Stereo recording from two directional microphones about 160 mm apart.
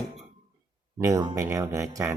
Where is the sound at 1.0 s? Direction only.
25° right (ahead or behind).